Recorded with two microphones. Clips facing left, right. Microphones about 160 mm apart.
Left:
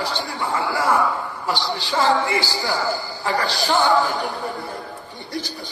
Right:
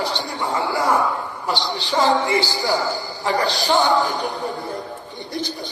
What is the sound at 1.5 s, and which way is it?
A man's voice, 20° right (ahead or behind).